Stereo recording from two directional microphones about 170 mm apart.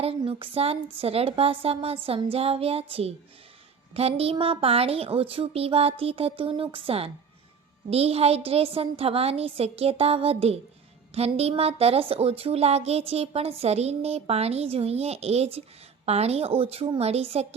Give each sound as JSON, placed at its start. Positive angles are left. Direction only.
{"t": 0.0, "sound": "speech", "side_deg": -35}